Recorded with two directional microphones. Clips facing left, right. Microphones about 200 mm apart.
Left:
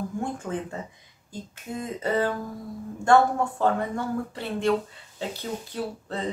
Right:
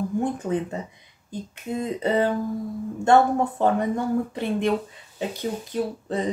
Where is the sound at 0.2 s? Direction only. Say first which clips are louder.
Right 6 dB; 20° right (ahead or behind).